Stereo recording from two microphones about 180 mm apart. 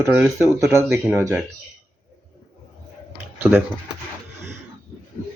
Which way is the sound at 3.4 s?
10° right (ahead or behind).